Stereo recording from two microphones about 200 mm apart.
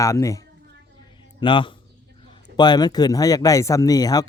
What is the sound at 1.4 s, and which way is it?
Speech, 25° left (ahead or behind).